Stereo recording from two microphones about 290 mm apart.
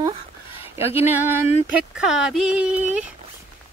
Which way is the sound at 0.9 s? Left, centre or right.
Centre.